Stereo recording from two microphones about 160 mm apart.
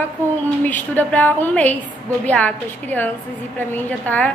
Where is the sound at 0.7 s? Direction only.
10° left (ahead or behind).